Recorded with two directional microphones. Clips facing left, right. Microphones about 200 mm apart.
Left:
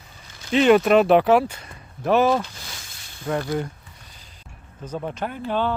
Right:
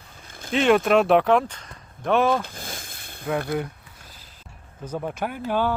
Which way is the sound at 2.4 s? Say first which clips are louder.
Right 1 dB; 50° right (ahead or behind).